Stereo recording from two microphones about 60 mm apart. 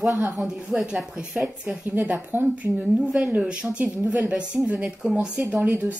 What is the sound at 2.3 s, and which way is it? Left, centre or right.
Speech, right.